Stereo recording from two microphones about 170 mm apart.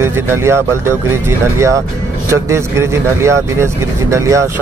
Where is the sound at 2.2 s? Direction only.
15° right (ahead or behind).